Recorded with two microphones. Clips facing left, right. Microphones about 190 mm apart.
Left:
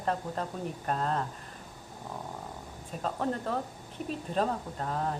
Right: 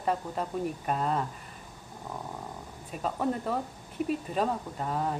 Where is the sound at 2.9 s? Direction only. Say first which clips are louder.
Right 2 dB; 5° right (ahead or behind).